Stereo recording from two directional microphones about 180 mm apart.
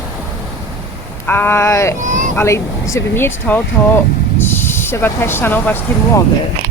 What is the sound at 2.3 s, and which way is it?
Speech, 15° left (ahead or behind).